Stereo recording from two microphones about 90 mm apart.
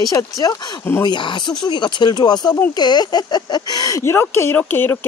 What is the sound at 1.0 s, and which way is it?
Speech, 60° left (ahead or behind).